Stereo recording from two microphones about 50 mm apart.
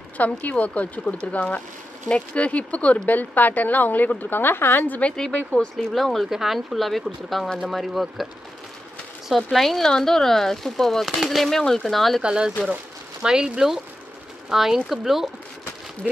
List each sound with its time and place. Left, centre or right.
0.2 s speech: left
5.1 s speech: centre
5.9 s speech: centre
9.3 s speech: centre
12.2 s speech: centre